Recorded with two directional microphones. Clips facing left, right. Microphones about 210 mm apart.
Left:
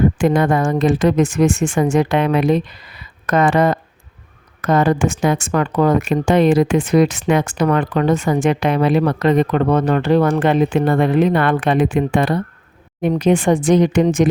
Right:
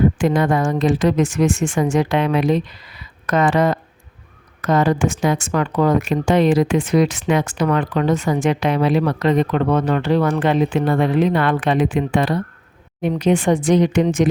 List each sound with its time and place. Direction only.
0.2 s speech: 55° left (ahead or behind)